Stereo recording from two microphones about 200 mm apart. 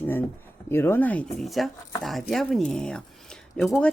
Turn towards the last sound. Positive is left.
turn(degrees=5)  # may be behind; listen again after turning